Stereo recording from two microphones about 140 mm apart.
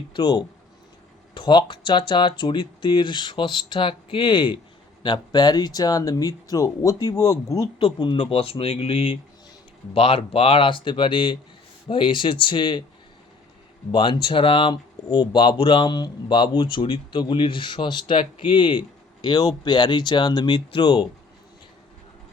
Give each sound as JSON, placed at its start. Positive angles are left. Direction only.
{"t": 0.1, "sound": "speech", "side_deg": 30}
{"t": 7.8, "sound": "speech", "side_deg": 40}
{"t": 13.9, "sound": "speech", "side_deg": 35}